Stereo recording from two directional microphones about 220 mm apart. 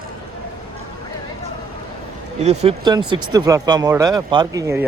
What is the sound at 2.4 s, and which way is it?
Speech, 30° right (ahead or behind).